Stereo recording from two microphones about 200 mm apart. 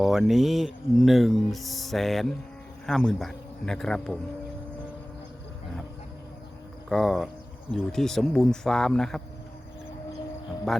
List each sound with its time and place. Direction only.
0.0 s speech: centre (ahead or behind)
6.8 s speech: centre (ahead or behind)
10.7 s speech: centre (ahead or behind)